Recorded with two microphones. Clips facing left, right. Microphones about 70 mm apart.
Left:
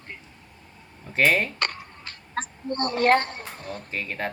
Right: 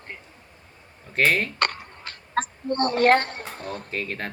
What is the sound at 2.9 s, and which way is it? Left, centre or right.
Speech, right.